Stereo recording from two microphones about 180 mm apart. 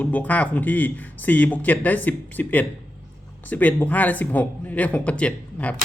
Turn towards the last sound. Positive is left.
turn(degrees=5)  # may be behind; listen again after turning